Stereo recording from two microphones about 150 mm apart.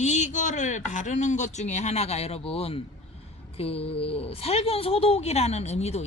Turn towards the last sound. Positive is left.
turn(degrees=45)  # may be behind; listen again after turning